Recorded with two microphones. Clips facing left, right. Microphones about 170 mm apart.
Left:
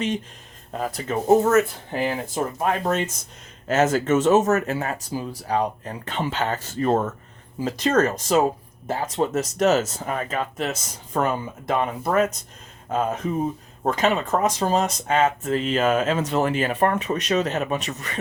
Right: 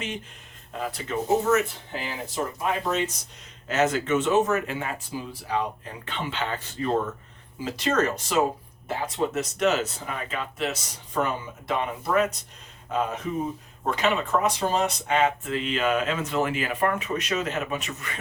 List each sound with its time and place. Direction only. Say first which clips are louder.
0.7 s speech: left 4 dB; 40° left (ahead or behind)